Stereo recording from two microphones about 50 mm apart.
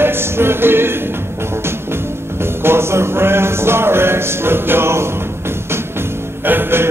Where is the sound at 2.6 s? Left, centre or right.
Right.